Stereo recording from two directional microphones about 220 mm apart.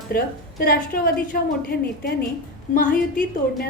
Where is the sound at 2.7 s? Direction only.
40° left (ahead or behind).